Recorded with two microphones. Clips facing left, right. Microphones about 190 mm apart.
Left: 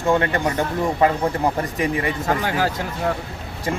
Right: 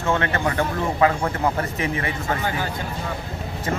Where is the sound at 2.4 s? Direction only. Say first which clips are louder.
Left 4 dB; 80° left.